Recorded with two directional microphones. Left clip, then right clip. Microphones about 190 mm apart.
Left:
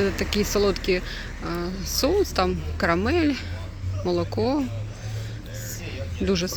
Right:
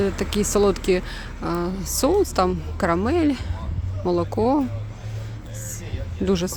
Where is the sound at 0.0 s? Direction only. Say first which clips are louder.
Right 1 dB; 15° right (ahead or behind).